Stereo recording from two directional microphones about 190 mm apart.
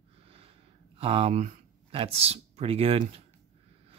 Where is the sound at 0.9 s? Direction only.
30° right (ahead or behind).